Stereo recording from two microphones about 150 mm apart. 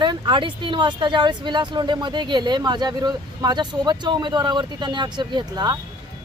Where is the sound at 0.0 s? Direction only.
30° right (ahead or behind).